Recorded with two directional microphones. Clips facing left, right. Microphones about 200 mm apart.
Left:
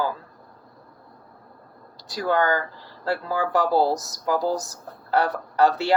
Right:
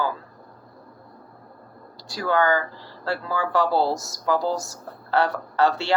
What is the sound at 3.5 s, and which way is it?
Speech, 15° left (ahead or behind).